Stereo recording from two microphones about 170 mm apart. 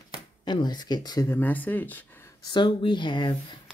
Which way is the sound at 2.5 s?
30° left (ahead or behind).